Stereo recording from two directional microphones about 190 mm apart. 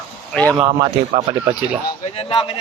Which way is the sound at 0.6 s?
30° right (ahead or behind).